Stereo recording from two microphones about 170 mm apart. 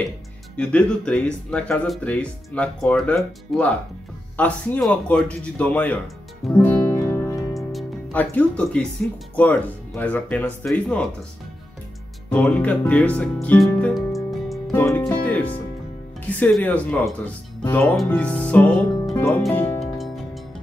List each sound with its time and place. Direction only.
0.6 s speech: 5° left (ahead or behind)
6.6 s music: 15° left (ahead or behind)
7.5 s music: 5° left (ahead or behind)
9.3 s speech: 10° left (ahead or behind)
12.3 s speech: 5° left (ahead or behind)
14.7 s speech: 10° left (ahead or behind)